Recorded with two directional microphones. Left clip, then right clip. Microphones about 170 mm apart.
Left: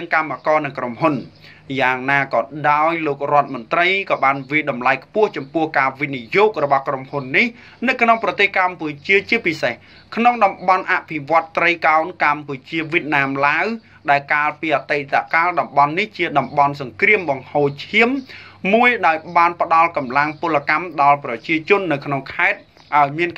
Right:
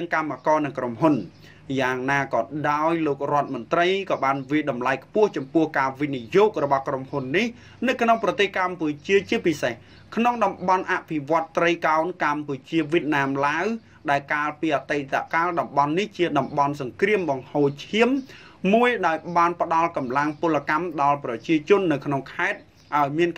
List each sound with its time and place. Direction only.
0.0 s speech: 50° right (ahead or behind)